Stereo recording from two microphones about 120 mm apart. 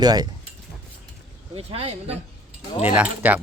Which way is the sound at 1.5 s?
60° right (ahead or behind).